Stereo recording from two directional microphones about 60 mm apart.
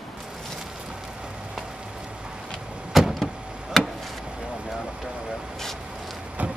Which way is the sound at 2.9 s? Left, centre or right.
Centre.